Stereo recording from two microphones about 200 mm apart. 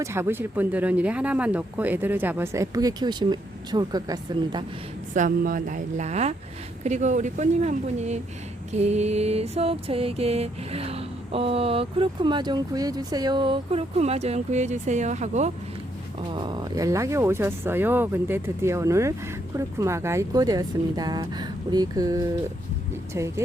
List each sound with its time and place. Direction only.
0.0 s speech: 10° right (ahead or behind)
5.1 s speech: 40° right (ahead or behind)
8.7 s mantra: 35° right (ahead or behind)
16.3 s speech: 25° right (ahead or behind)
19.5 s mantra: 15° right (ahead or behind)